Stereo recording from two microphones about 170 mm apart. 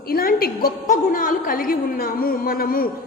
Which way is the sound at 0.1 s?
60° left (ahead or behind).